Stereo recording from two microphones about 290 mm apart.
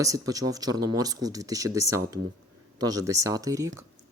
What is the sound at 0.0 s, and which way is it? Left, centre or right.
Speech, centre.